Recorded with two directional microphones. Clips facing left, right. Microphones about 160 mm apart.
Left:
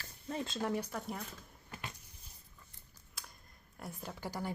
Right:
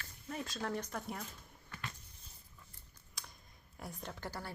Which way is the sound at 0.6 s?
10° left (ahead or behind).